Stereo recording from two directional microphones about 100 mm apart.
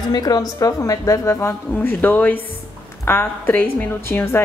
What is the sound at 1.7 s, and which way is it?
A woman's voice, 20° left (ahead or behind).